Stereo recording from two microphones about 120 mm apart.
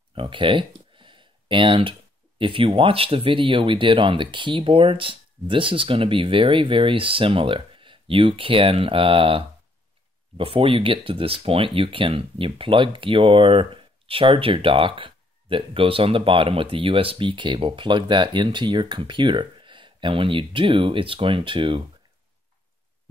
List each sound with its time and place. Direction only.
0.1 s speech: 45° right (ahead or behind)